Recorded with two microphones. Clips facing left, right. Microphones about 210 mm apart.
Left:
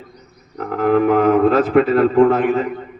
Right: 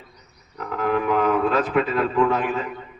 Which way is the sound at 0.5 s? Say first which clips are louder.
Left 7 dB; 50° left (ahead or behind).